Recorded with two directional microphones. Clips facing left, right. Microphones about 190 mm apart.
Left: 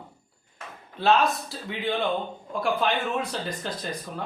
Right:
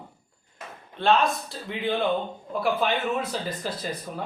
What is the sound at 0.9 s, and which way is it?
Speech, 5° left (ahead or behind).